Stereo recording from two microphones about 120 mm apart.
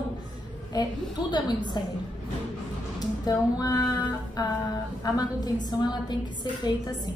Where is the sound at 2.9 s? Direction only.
30° left (ahead or behind).